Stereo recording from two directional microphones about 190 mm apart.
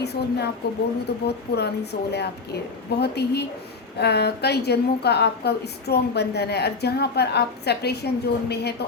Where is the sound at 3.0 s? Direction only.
60° left (ahead or behind).